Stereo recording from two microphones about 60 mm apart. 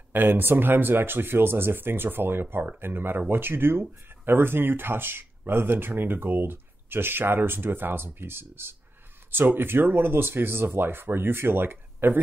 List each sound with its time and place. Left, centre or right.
0.1 s speech: right